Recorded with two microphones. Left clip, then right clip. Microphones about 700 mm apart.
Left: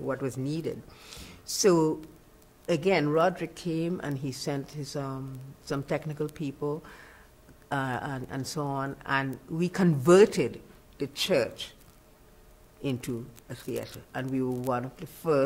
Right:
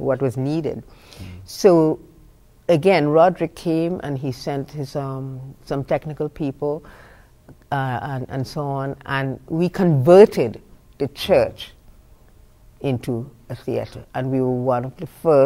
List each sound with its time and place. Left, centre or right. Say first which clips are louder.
0.0 s speech: right 11 dB; right
12.8 s speech: right 9 dB; right